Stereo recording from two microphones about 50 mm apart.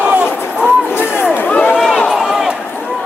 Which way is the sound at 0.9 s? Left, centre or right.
Left.